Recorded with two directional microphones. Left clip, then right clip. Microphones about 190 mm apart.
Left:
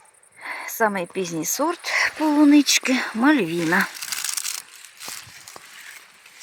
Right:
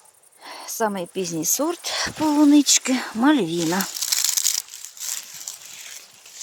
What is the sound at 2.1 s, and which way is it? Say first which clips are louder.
Speech: right 1 dB; 5° right (ahead or behind).